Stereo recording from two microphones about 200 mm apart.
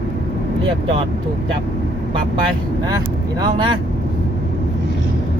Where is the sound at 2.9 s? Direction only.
20° right (ahead or behind).